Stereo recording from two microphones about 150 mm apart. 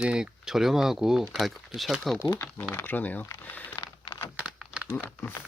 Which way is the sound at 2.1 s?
20° left (ahead or behind).